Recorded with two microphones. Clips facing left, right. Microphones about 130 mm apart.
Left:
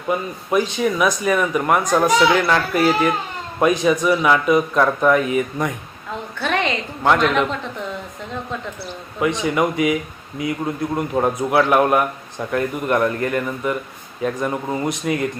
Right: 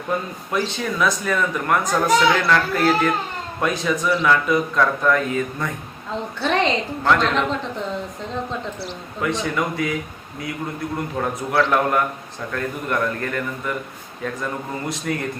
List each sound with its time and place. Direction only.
0.1 s speech: 10° left (ahead or behind)
7.0 s speech: 15° left (ahead or behind)
9.2 s speech: 20° left (ahead or behind)